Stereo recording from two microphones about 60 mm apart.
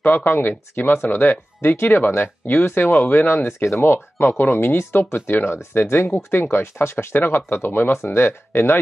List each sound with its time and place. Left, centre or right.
0.0 s speech: left
6.1 s speech: left
6.5 s speech: left